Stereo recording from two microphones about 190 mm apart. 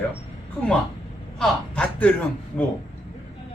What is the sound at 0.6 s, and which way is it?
Speech, 5° left (ahead or behind).